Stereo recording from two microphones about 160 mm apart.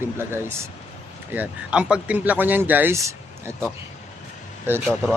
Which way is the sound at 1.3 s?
5° right (ahead or behind).